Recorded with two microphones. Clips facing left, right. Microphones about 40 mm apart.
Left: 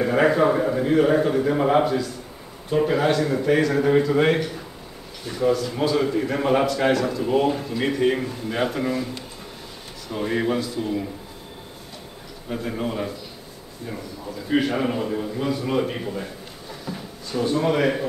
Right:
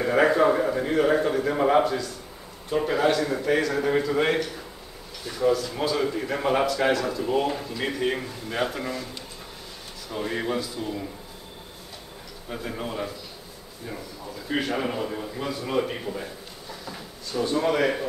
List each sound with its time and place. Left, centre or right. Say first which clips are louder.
0.0 s a man's voice: left 1 dB; centre
12.4 s a man's voice: left 5 dB; centre